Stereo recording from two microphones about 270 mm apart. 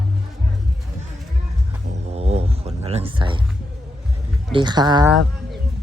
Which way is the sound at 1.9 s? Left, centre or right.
Right.